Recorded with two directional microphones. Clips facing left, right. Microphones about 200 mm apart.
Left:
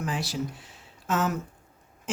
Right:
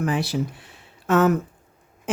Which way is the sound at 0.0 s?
60° right (ahead or behind).